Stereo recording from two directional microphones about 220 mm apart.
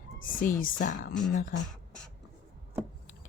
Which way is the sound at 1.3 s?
35° left (ahead or behind).